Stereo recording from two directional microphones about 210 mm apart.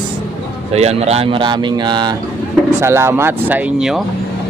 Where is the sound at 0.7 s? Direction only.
30° right (ahead or behind).